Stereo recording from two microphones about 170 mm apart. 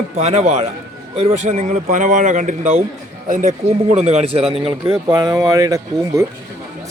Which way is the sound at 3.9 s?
40° right (ahead or behind).